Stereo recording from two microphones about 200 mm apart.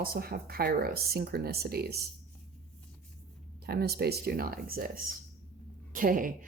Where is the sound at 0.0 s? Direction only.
50° right (ahead or behind).